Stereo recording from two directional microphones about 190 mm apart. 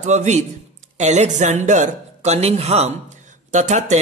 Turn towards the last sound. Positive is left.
turn(degrees=-40)  # may be behind; listen again after turning